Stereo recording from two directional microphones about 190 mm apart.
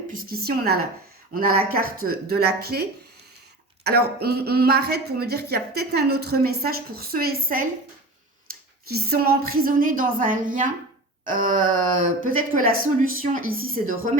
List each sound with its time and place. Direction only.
0.1 s a woman's voice: 50° right (ahead or behind)
3.8 s speech: 55° right (ahead or behind)
8.9 s a woman's voice: 55° right (ahead or behind)